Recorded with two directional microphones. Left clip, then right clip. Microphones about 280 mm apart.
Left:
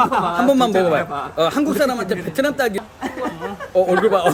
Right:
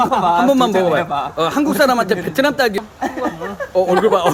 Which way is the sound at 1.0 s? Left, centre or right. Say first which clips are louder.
Right 4 dB; right.